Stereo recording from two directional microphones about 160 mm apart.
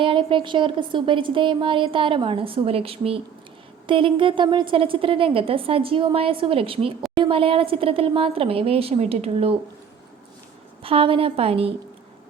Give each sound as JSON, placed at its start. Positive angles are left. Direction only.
{"t": 0.0, "sound": "speech", "side_deg": -35}
{"t": 10.8, "sound": "speech", "side_deg": -35}